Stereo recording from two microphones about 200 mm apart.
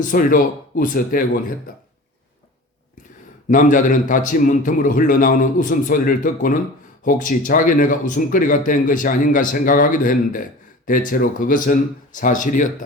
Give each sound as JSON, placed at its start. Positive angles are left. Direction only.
{"t": 0.1, "sound": "speech", "side_deg": 40}
{"t": 3.5, "sound": "a man's voice", "side_deg": 40}